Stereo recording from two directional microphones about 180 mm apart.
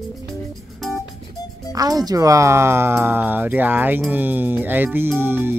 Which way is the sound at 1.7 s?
20° right (ahead or behind).